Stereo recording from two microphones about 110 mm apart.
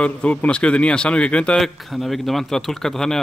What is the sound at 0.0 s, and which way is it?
A man's voice, 10° left (ahead or behind).